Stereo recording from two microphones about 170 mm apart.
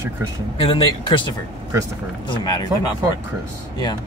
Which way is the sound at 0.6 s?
30° left (ahead or behind).